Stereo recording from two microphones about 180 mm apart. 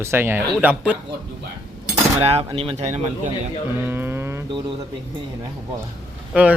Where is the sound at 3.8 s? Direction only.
10° right (ahead or behind).